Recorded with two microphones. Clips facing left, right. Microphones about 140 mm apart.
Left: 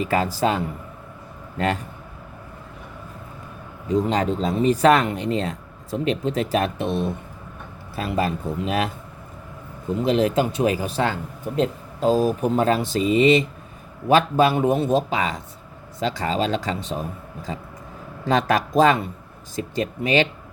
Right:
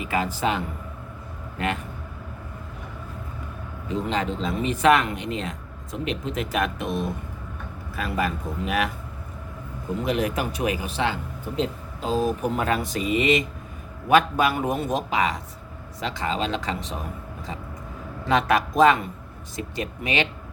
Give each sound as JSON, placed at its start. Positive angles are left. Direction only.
{"t": 0.0, "sound": "speech", "side_deg": 35}
{"t": 3.9, "sound": "speech", "side_deg": 40}
{"t": 10.0, "sound": "speech", "side_deg": 30}
{"t": 12.2, "sound": "speech", "side_deg": 30}
{"t": 18.3, "sound": "speech", "side_deg": 35}